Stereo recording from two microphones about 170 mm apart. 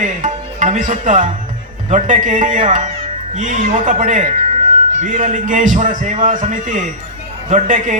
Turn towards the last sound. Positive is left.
turn(degrees=-45)  # may be behind; listen again after turning